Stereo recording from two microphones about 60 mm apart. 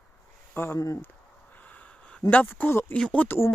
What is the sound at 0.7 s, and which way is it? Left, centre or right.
Speech, left.